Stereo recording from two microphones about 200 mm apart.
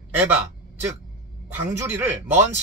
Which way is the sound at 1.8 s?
10° right (ahead or behind).